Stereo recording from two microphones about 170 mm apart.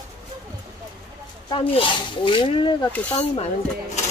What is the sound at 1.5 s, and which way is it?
Speech, 30° left (ahead or behind).